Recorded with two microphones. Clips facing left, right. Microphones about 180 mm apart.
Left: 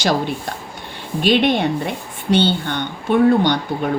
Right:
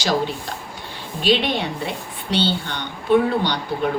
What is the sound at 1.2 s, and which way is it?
Speech, 50° left (ahead or behind).